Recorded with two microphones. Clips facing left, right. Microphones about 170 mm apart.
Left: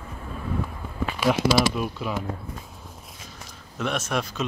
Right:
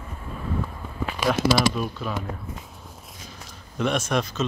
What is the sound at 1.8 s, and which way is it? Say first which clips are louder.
Speech: even; 10° left (ahead or behind).